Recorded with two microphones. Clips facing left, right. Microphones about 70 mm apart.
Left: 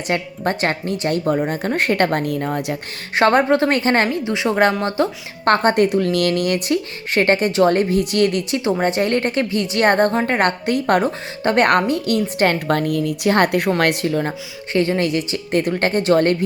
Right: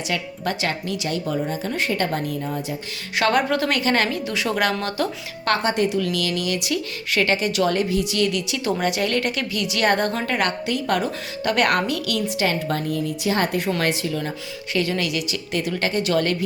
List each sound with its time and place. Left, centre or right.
0.1 s speech: left
3.2 s speech: left
5.5 s speech: left